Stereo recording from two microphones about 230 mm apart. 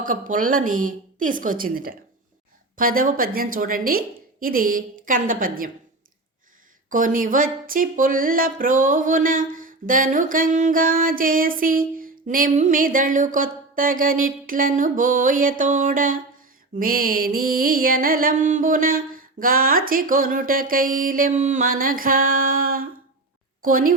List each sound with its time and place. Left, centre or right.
0.0 s speech: right
6.9 s speech: right